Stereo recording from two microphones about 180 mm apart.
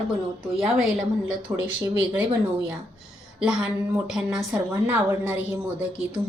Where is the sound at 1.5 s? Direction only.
15° right (ahead or behind).